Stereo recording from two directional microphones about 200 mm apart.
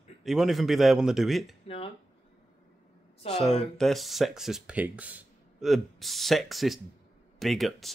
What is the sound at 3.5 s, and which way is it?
Speech, centre (ahead or behind).